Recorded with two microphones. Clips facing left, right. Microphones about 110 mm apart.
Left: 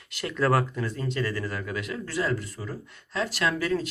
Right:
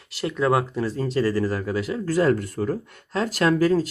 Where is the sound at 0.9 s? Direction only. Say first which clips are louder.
Right 7 dB; 30° right (ahead or behind).